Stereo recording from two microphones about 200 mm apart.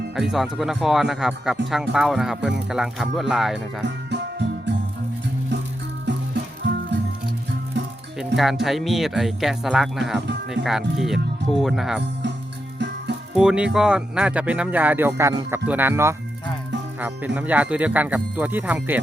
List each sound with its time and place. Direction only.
0.2 s speech: centre (ahead or behind)
3.8 s music: 60° right (ahead or behind)
6.1 s music: 60° right (ahead or behind)
8.4 s speech: centre (ahead or behind)
13.3 s speech: 5° right (ahead or behind)